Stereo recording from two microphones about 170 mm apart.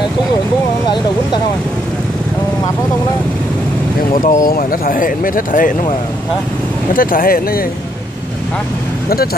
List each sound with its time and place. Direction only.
4.1 s speech: 55° left (ahead or behind)
7.0 s speech: 55° left (ahead or behind)